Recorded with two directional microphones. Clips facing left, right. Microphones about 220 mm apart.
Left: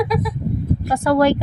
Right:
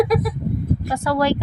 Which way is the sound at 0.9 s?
50° left (ahead or behind).